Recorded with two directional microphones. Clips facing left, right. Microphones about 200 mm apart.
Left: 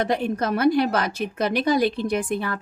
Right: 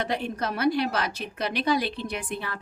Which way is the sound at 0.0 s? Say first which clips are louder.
Left 6 dB; 45° left (ahead or behind).